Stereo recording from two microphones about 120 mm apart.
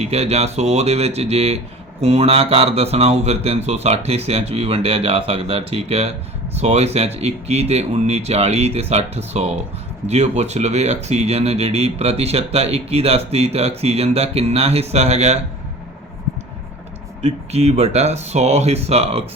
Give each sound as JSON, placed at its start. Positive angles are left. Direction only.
{"t": 0.0, "sound": "speech", "side_deg": -60}
{"t": 17.2, "sound": "speech", "side_deg": -65}